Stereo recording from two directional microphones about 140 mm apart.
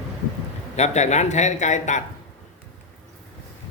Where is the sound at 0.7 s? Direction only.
55° left (ahead or behind).